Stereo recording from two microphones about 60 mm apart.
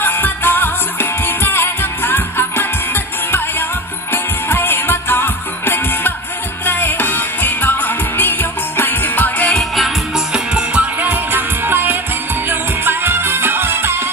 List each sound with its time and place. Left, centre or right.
0.0 s music: left
9.5 s music: centre; by 14.0 s right